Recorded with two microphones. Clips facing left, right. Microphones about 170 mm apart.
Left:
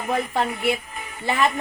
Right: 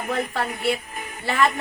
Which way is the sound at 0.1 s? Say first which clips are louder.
Left 3 dB; 20° left (ahead or behind).